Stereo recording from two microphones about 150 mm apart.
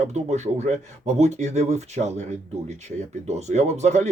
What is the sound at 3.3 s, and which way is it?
Speech, 50° right (ahead or behind).